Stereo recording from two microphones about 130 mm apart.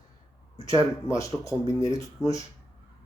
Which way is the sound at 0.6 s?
25° left (ahead or behind).